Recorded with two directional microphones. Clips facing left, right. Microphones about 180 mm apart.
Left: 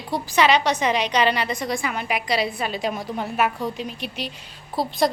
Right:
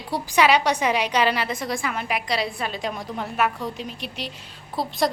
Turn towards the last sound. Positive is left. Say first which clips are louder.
# left 2 dB
turn(degrees=0)  # may be behind; listen again after turning